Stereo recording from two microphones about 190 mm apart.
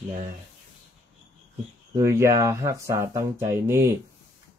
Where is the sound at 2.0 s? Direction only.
15° right (ahead or behind).